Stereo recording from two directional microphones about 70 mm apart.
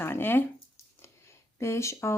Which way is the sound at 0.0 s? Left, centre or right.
Left.